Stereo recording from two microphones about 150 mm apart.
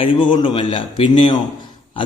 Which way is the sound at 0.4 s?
35° left (ahead or behind).